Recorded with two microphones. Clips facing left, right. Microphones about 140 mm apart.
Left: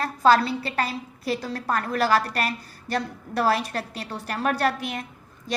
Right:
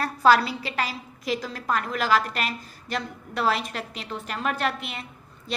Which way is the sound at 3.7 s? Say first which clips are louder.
Left 2 dB; 35° left (ahead or behind).